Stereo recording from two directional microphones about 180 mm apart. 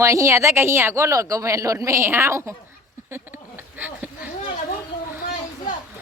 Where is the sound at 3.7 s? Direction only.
10° right (ahead or behind).